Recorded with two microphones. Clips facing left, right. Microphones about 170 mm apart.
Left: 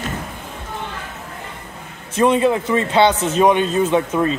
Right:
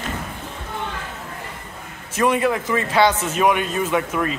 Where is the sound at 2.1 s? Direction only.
25° left (ahead or behind).